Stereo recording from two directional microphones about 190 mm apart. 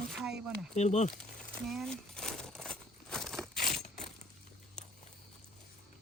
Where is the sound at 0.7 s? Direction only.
35° left (ahead or behind).